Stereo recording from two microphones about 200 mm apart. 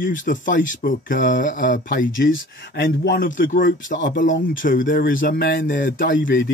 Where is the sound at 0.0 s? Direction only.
40° left (ahead or behind).